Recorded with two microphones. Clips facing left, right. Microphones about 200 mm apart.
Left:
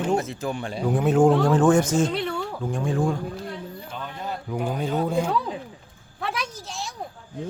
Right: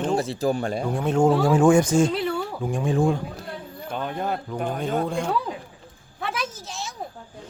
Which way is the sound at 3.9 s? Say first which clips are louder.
Right 7 dB; 55° right (ahead or behind).